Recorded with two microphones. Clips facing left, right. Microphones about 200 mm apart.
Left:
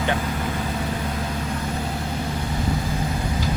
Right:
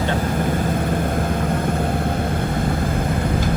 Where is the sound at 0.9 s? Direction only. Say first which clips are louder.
Right 6 dB; 50° right (ahead or behind).